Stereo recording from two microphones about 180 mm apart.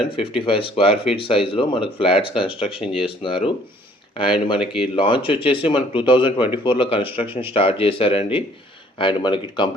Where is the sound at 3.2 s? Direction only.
30° left (ahead or behind).